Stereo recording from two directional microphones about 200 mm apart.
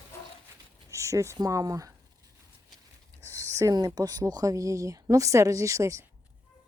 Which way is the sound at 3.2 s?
15° right (ahead or behind).